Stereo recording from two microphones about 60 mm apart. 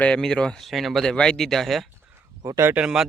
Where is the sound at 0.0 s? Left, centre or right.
Centre.